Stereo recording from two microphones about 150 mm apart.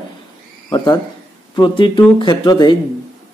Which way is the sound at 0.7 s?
30° left (ahead or behind).